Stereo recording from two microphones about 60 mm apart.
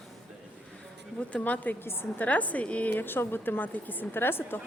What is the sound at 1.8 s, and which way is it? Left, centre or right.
Speech, left.